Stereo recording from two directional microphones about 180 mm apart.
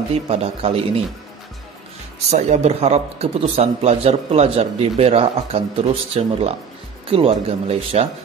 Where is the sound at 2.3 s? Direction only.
40° right (ahead or behind).